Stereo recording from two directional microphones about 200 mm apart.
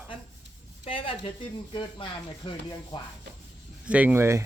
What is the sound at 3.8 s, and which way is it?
Speech, 5° right (ahead or behind).